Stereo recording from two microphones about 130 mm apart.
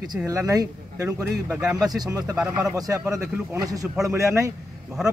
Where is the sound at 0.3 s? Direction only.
25° right (ahead or behind).